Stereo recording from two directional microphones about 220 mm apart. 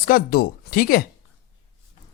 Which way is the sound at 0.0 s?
40° left (ahead or behind).